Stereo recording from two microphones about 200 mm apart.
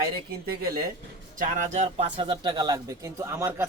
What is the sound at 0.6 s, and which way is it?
Speech, 50° right (ahead or behind).